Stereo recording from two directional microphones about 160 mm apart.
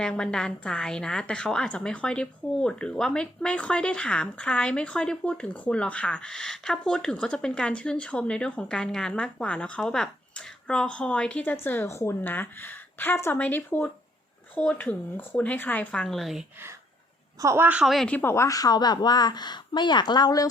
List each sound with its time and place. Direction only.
0.0 s a woman's voice: 5° left (ahead or behind)
17.4 s speech: 15° right (ahead or behind); by 20.5 s 25° left (ahead or behind)